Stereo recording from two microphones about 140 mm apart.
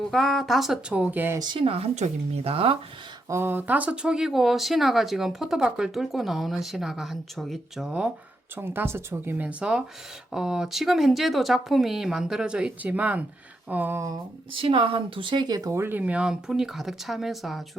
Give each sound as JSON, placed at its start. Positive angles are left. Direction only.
{"t": 0.1, "sound": "speech", "side_deg": 0}
{"t": 1.4, "sound": "speech", "side_deg": -35}
{"t": 3.2, "sound": "speech", "side_deg": -15}
{"t": 14.5, "sound": "speech", "side_deg": -40}